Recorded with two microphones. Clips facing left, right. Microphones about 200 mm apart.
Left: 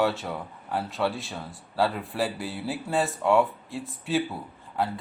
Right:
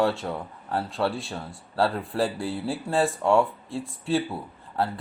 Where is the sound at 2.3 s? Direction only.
30° right (ahead or behind).